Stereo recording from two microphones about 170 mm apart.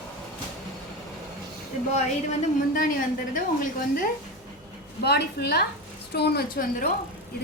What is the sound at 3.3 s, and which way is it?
Speech, 50° left (ahead or behind).